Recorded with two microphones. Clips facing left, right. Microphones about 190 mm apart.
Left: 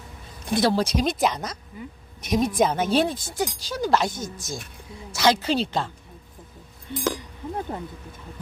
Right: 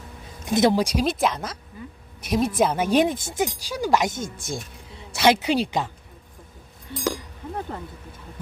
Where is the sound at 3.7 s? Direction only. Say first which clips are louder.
Left 1 dB; 10° right (ahead or behind).